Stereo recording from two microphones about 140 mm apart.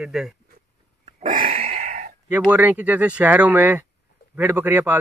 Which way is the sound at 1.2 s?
85° right.